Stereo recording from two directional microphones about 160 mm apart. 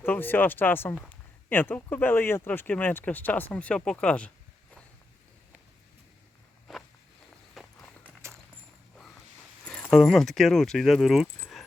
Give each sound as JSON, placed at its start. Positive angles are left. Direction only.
{"t": 0.0, "sound": "speech", "side_deg": 10}
{"t": 6.7, "sound": "walk", "side_deg": 0}
{"t": 8.2, "sound": "a sound", "side_deg": -15}
{"t": 9.6, "sound": "speech", "side_deg": 5}